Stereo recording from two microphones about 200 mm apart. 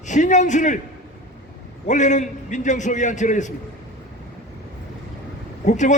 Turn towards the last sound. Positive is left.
turn(degrees=35)  # may be behind; listen again after turning